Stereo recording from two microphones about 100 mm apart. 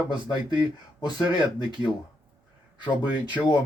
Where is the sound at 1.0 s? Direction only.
45° left (ahead or behind).